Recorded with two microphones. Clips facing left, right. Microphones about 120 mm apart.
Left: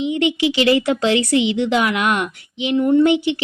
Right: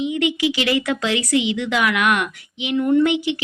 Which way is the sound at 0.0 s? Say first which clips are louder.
Left 2 dB; 25° left (ahead or behind).